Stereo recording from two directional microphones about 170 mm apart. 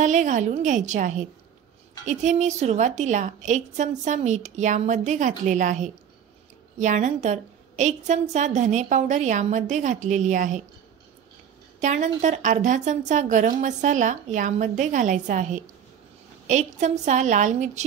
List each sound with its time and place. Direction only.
0.0 s a woman's voice: 45° right (ahead or behind)
11.8 s a woman's voice: 45° right (ahead or behind)